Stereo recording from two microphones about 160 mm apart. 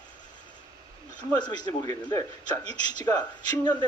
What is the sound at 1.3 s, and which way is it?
A man's voice, 25° left (ahead or behind).